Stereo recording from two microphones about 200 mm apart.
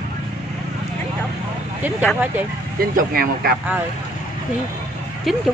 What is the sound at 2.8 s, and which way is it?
Speech, 45° right (ahead or behind).